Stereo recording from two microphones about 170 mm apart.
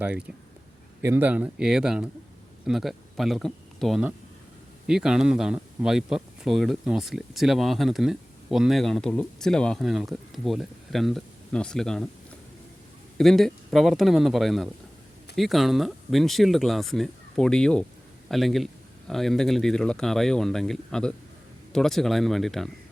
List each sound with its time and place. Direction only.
0.0 s speech: 5° right (ahead or behind)
13.1 s speech: centre (ahead or behind)